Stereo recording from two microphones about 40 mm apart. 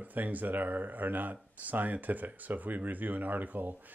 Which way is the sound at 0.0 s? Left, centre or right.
Right.